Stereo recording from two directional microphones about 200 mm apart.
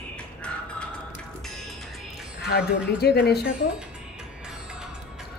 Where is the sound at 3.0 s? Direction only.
55° left (ahead or behind).